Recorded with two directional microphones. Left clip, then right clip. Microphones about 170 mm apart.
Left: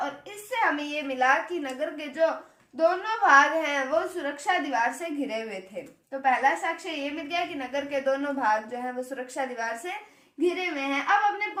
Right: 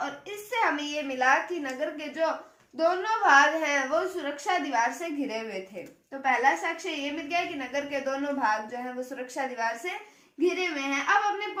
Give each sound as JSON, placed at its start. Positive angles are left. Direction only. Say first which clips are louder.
{"t": 1.0, "sound": "a woman's voice", "louder": "left 1 dB", "side_deg": 35}